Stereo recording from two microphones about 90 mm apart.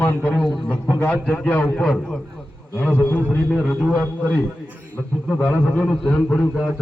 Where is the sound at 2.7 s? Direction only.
20° left (ahead or behind).